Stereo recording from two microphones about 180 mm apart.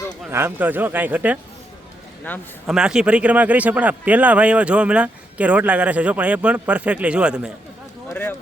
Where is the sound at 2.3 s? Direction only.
10° left (ahead or behind).